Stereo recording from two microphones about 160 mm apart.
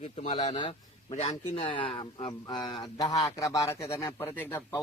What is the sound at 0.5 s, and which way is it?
Speech, 30° left (ahead or behind).